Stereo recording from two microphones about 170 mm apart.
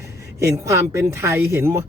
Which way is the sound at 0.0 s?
15° right (ahead or behind).